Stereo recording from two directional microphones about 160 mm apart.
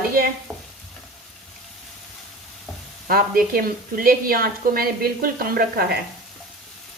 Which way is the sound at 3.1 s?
65° right (ahead or behind).